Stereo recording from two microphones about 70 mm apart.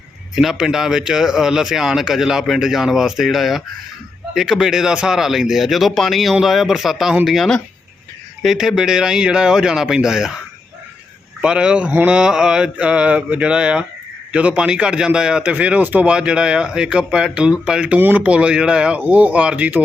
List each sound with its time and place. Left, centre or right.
0.3 s a man's voice: centre
11.3 s speech: centre